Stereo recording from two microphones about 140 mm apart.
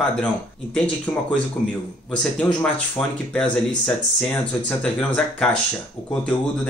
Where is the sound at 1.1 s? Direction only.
15° left (ahead or behind).